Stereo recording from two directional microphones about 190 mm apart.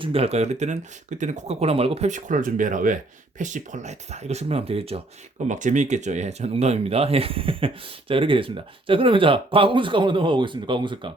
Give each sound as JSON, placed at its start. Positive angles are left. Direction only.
{"t": 0.0, "sound": "speech", "side_deg": -30}